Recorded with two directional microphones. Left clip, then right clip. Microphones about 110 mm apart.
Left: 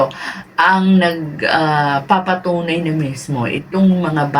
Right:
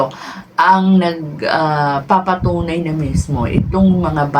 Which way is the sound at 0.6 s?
20° right (ahead or behind).